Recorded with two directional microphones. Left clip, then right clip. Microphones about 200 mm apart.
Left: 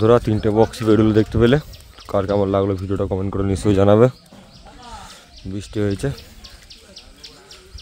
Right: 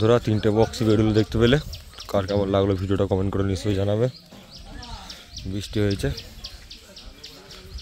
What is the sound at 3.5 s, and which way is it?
Speech, 25° left (ahead or behind).